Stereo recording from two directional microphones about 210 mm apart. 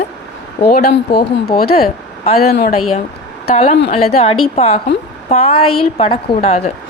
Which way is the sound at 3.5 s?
30° left (ahead or behind).